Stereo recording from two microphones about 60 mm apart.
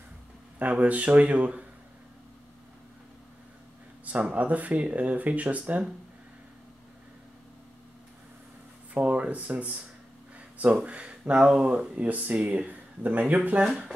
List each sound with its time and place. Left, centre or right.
0.6 s speech: right
4.0 s speech: right
8.9 s speech: right